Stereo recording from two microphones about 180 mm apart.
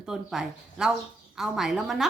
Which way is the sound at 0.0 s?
5° right (ahead or behind).